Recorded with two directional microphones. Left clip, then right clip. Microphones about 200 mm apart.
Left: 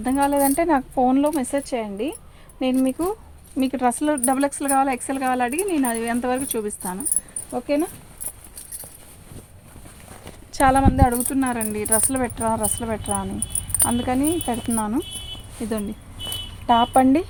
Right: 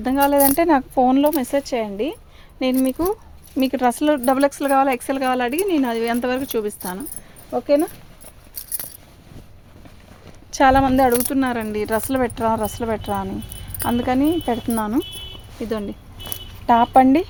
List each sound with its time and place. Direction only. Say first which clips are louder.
0.0 s speech: right 3 dB; 50° right (ahead or behind)
10.5 s speech: right 3 dB; 45° right (ahead or behind)
16.6 s speech: right 3 dB; 50° right (ahead or behind)